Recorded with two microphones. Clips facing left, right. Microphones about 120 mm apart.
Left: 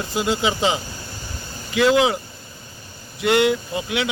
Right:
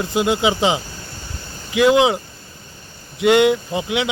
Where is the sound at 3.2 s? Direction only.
20° right (ahead or behind).